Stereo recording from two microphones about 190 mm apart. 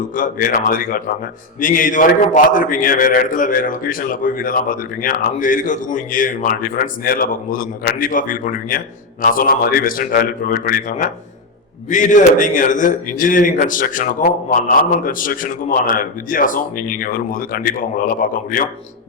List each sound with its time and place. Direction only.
0.2 s a man's voice: 45° left (ahead or behind)